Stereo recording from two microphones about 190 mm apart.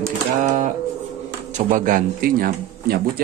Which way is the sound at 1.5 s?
45° right (ahead or behind).